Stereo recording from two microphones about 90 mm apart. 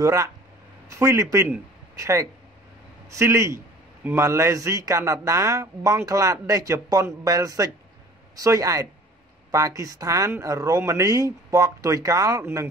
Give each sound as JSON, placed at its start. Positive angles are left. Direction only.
{"t": 0.0, "sound": "speech", "side_deg": -40}